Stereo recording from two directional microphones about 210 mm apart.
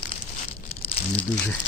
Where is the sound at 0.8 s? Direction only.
25° left (ahead or behind).